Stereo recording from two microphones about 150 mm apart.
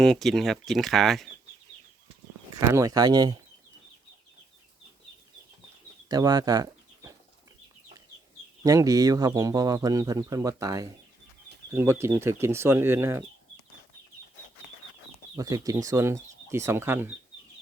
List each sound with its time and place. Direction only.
0.0 s speech: centre (ahead or behind)
2.6 s speech: 20° right (ahead or behind)
6.1 s speech: 25° right (ahead or behind)
8.6 s speech: 25° right (ahead or behind)
15.4 s speech: 25° right (ahead or behind)